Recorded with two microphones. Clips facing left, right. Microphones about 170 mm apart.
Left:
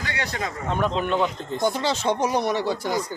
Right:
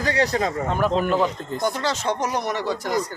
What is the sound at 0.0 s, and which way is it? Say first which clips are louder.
Speech: right 8 dB; 35° right (ahead or behind).